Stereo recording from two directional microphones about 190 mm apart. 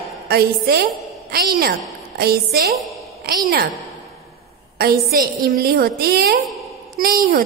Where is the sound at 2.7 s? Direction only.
Centre (ahead or behind).